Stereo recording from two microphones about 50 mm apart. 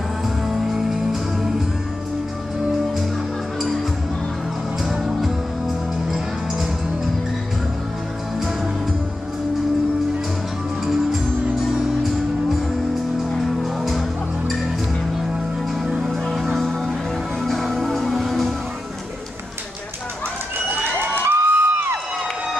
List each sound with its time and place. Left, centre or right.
0.4 s music: centre
4.9 s music: centre
15.9 s music: centre
16.2 s music: centre
21.2 s a sound: right